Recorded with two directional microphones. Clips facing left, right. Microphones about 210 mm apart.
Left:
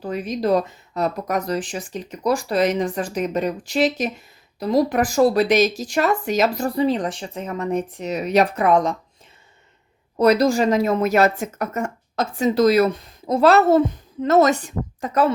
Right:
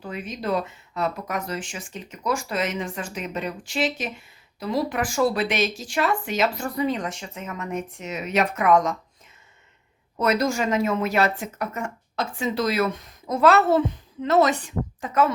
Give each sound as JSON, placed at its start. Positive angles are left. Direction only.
{"t": 0.0, "sound": "a woman's voice", "side_deg": 40}
{"t": 10.2, "sound": "a woman's voice", "side_deg": 35}